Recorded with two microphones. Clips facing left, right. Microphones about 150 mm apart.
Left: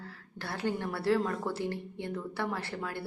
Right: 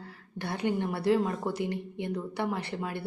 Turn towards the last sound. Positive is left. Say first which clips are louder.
# right 2 dB
turn(degrees=-20)  # may be behind; listen again after turning